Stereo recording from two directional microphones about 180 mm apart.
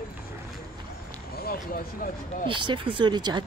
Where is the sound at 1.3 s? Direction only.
55° left (ahead or behind).